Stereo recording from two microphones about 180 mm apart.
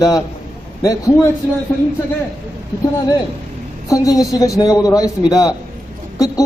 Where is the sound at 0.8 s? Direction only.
20° left (ahead or behind).